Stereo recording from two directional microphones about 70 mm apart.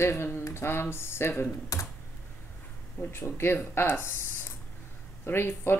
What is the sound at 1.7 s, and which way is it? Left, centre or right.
Computer keyboard, left.